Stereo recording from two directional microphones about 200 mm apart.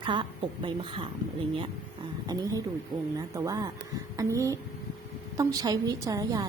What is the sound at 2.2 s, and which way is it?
A woman's voice, 20° right (ahead or behind).